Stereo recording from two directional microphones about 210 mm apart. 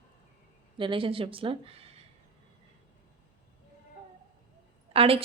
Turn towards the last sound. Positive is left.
turn(degrees=-25)  # may be behind; listen again after turning